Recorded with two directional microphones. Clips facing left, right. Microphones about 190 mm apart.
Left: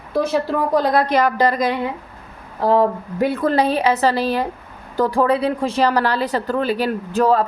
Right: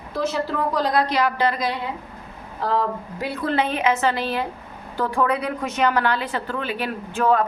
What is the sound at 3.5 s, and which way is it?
Speech, 35° left (ahead or behind).